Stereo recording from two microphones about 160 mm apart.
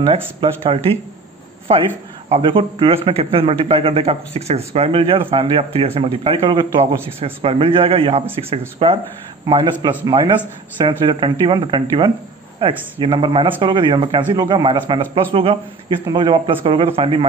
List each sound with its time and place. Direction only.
0.0 s speech: 35° right (ahead or behind)